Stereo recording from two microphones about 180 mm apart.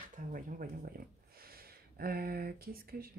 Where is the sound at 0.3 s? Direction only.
50° right (ahead or behind).